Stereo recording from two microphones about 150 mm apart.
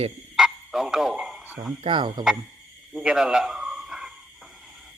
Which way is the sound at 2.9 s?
5° right (ahead or behind).